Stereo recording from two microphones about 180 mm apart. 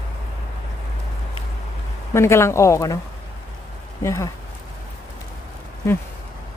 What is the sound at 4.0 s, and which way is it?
Speech, 15° left (ahead or behind).